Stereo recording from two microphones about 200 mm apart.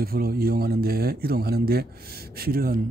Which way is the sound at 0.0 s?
50° right (ahead or behind).